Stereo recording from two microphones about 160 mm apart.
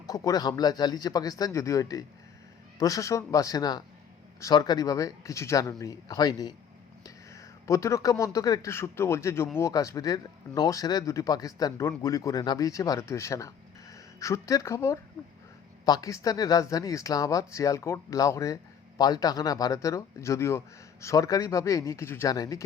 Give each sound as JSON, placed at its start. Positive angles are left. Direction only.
{"t": 0.0, "sound": "speech", "side_deg": 20}